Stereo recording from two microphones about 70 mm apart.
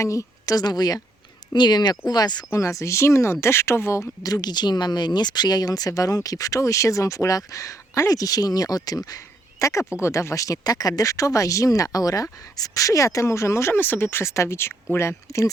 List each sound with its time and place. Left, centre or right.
0.0 s speech: left
1.5 s speech: left
2.5 s speech: left
9.0 s a sound: left
10.0 s speech: left